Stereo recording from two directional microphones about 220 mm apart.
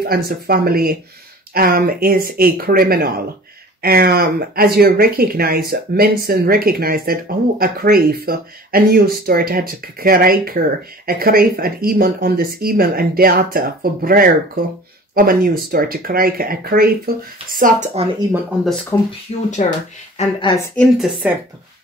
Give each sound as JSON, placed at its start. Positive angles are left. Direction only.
{"t": 0.0, "sound": "speech", "side_deg": -45}
{"t": 18.3, "sound": "a woman's voice", "side_deg": 0}
{"t": 19.3, "sound": "speech", "side_deg": 30}
{"t": 20.7, "sound": "a woman's voice", "side_deg": -5}